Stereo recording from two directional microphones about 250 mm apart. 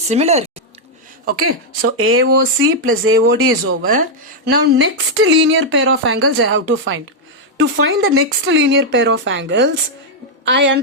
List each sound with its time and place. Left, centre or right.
0.1 s speech: right
1.5 s speech: right